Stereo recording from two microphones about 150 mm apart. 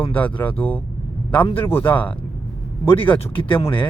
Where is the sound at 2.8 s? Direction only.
35° left (ahead or behind).